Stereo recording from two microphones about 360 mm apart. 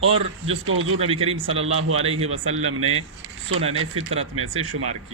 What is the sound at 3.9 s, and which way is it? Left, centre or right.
Speech, centre.